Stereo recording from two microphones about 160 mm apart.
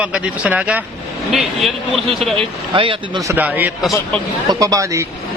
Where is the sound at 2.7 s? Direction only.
30° right (ahead or behind).